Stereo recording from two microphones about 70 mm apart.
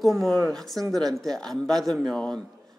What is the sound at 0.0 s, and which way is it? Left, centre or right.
Speech, centre.